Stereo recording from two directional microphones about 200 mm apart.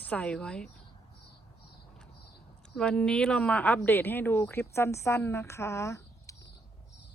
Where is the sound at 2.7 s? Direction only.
5° left (ahead or behind).